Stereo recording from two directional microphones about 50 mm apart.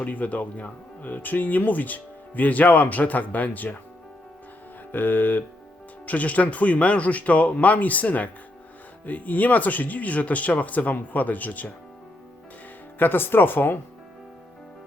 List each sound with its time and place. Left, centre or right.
0.0 s speech: left
4.9 s speech: left
13.0 s speech: left